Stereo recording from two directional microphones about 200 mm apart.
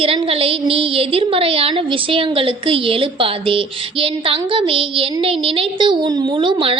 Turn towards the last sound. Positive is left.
turn(degrees=-25)  # may be behind; listen again after turning